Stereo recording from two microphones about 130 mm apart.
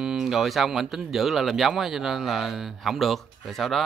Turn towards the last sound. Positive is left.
turn(degrees=0)  # may be behind; listen again after turning